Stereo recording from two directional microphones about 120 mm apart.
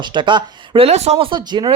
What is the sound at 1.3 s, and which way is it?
Speech, 35° right (ahead or behind).